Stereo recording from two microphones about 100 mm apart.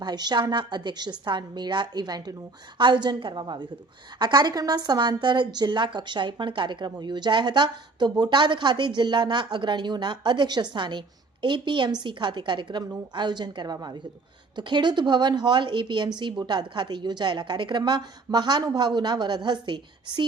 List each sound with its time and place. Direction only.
0.0 s a woman's voice: 45° right (ahead or behind)